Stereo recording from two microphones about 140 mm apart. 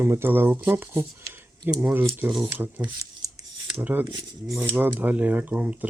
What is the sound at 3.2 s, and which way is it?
Scissors, 25° right (ahead or behind).